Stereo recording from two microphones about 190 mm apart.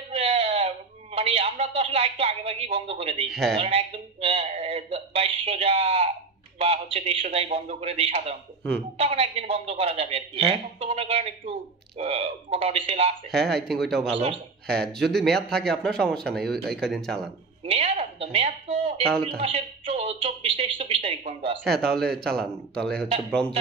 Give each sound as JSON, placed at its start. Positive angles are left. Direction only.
{"t": 0.1, "sound": "a sound", "side_deg": -30}
{"t": 3.3, "sound": "speech", "side_deg": 0}
{"t": 3.5, "sound": "speech", "side_deg": -30}
{"t": 13.3, "sound": "speech", "side_deg": 0}
{"t": 17.6, "sound": "speech", "side_deg": -35}
{"t": 21.6, "sound": "speech", "side_deg": 0}